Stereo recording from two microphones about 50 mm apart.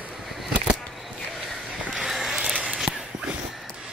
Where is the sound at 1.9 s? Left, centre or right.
Centre.